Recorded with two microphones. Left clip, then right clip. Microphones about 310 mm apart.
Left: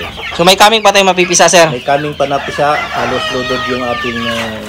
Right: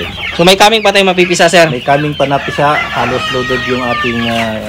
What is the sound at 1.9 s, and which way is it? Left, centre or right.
Speech, right.